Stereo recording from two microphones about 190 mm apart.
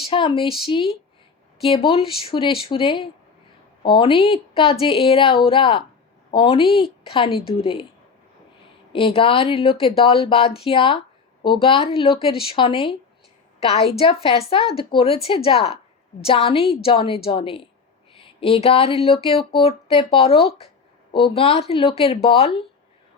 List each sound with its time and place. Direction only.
0.1 s speech: 25° left (ahead or behind)
8.9 s speech: 30° left (ahead or behind)